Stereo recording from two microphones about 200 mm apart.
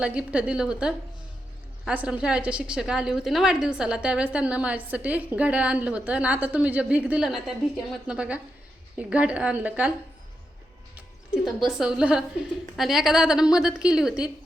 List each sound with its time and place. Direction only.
0.0 s a woman's voice: 5° right (ahead or behind)
11.8 s a woman's voice: 5° right (ahead or behind)